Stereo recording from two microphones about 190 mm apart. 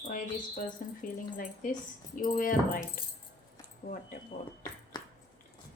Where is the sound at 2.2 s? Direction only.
45° left (ahead or behind).